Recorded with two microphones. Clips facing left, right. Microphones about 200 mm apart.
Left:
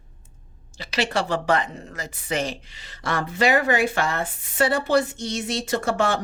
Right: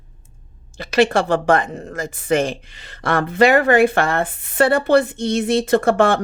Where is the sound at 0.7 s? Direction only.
55° right (ahead or behind).